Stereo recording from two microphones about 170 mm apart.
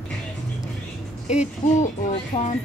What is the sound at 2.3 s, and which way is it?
Speech, 40° left (ahead or behind).